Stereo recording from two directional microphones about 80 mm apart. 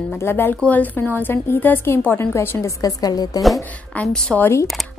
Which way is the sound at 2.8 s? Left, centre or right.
Left.